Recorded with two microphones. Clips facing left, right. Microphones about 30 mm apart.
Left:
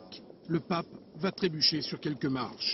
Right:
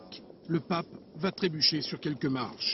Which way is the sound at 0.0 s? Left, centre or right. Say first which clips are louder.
Right 1 dB; centre.